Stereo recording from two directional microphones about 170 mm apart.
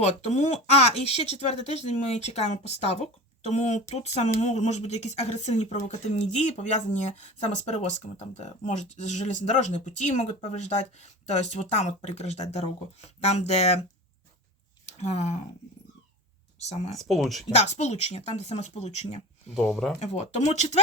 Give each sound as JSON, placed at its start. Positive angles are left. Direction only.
{"t": 0.0, "sound": "speech", "side_deg": 40}
{"t": 14.8, "sound": "speech", "side_deg": 40}
{"t": 16.6, "sound": "speech", "side_deg": 40}
{"t": 17.0, "sound": "speech", "side_deg": 0}
{"t": 17.6, "sound": "speech", "side_deg": 40}
{"t": 19.7, "sound": "speech", "side_deg": 0}
{"t": 20.0, "sound": "speech", "side_deg": 40}